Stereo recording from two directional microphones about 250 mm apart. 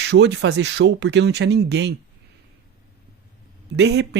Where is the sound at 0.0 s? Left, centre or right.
Right.